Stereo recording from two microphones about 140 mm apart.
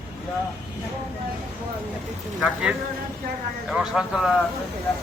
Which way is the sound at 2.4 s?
10° right (ahead or behind).